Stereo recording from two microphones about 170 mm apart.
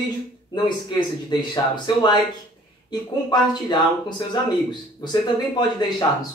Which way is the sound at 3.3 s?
25° left (ahead or behind).